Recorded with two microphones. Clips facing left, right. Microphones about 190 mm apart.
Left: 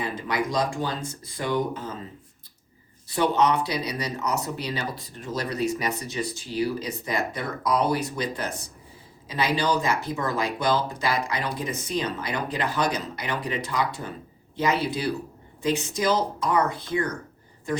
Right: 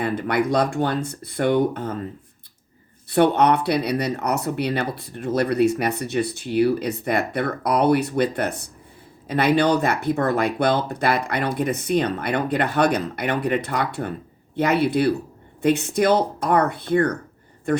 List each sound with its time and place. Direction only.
0.0 s speech: 60° right (ahead or behind)
3.1 s speech: 60° right (ahead or behind)